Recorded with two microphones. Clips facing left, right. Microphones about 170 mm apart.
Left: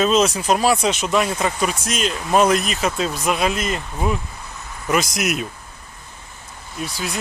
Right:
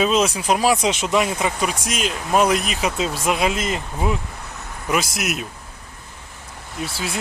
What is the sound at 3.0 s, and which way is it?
Speech, 20° right (ahead or behind).